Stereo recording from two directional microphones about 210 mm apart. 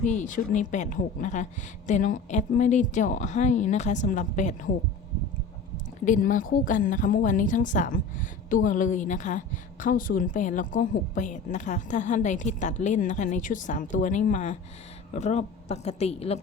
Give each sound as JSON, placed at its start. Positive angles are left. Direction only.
{"t": 0.0, "sound": "a woman's voice", "side_deg": 35}
{"t": 6.1, "sound": "a woman's voice", "side_deg": 40}